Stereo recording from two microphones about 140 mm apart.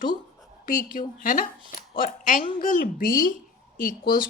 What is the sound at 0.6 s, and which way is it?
A woman's voice, 75° left (ahead or behind).